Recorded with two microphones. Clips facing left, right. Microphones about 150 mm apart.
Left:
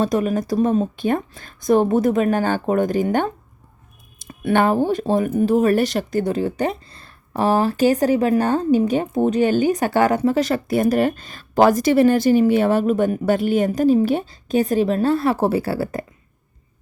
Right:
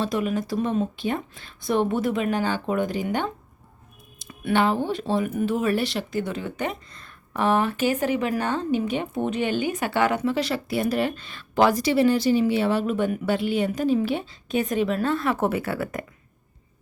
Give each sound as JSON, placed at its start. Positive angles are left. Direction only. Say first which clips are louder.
{"t": 0.0, "sound": "speech", "louder": "left 5 dB", "side_deg": 45}